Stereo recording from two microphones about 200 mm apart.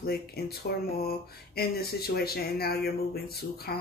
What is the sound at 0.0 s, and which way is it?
Speech, 50° left (ahead or behind).